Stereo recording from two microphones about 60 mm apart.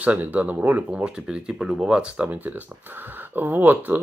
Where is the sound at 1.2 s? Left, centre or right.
Centre; by 3.9 s right.